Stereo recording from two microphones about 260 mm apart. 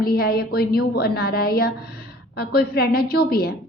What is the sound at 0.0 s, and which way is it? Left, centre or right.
A woman's voice, left.